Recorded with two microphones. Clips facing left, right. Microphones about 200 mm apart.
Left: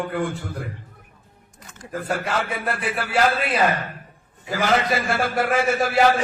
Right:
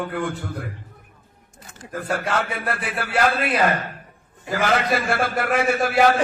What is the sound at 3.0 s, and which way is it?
Speech, 60° right (ahead or behind).